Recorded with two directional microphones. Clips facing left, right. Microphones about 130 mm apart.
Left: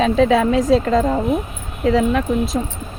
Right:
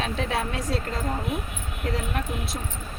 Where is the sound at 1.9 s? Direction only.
90° left.